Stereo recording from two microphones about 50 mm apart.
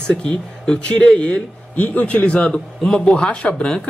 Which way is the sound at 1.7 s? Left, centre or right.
Left.